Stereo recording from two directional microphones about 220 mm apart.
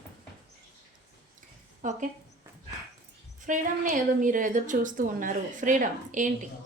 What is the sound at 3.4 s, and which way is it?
Speech, 35° right (ahead or behind).